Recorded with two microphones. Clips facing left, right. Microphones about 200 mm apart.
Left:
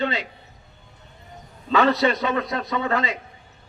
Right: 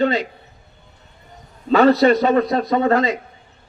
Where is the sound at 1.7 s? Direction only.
40° right (ahead or behind).